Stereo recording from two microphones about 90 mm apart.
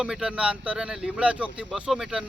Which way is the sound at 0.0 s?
10° right (ahead or behind).